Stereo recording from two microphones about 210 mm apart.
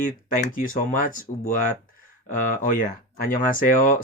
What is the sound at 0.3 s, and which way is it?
Speech, 40° left (ahead or behind).